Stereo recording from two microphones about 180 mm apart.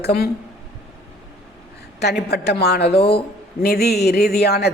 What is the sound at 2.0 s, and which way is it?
A man's voice, 65° left (ahead or behind).